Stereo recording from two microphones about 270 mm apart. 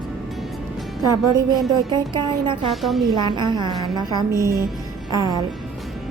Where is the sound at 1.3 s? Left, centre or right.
Centre.